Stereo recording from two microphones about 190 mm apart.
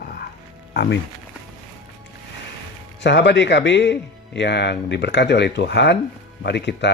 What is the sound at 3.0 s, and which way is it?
Speech, 65° left (ahead or behind).